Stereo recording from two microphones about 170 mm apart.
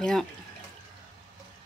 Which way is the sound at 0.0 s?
5° left (ahead or behind).